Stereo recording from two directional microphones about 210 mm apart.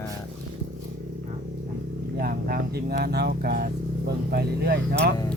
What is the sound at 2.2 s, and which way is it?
Speech, 45° right (ahead or behind).